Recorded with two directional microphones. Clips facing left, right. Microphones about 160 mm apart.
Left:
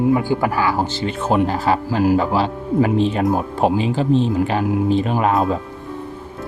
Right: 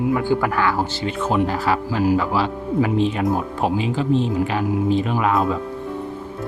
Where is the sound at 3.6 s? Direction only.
35° left (ahead or behind).